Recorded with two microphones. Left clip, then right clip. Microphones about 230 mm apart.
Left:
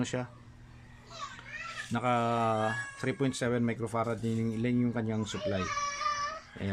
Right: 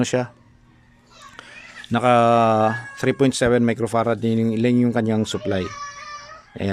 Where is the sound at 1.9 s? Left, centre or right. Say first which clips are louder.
Right 14 dB; right.